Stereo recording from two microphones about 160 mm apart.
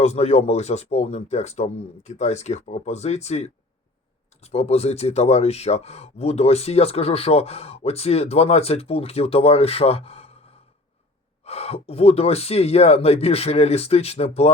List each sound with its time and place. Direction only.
0.0 s speech: 40° left (ahead or behind)